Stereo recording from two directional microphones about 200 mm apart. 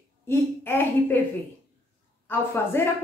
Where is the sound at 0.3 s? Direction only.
10° left (ahead or behind).